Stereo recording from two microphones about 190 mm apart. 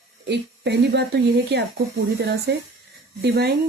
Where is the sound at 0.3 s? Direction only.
65° right (ahead or behind).